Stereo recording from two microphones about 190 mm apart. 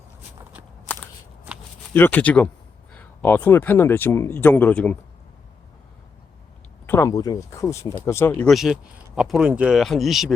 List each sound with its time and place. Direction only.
1.9 s speech: 10° left (ahead or behind)
6.8 s speech: 15° left (ahead or behind)
8.4 s speech: centre (ahead or behind)